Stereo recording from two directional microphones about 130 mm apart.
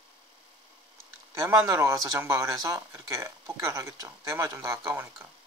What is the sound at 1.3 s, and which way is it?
Speech, 20° right (ahead or behind).